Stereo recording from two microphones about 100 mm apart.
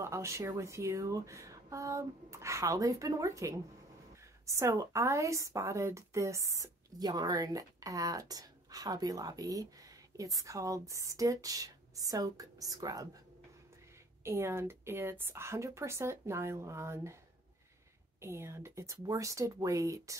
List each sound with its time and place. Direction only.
0.0 s a woman's voice: 30° right (ahead or behind)
14.2 s a woman's voice: 25° right (ahead or behind)
18.2 s a woman's voice: 25° right (ahead or behind)